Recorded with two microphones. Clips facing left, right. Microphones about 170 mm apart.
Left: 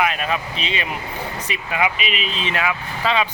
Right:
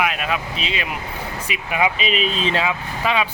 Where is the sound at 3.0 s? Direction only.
10° right (ahead or behind).